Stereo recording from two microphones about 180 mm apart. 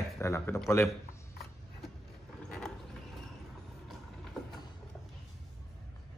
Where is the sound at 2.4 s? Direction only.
5° left (ahead or behind).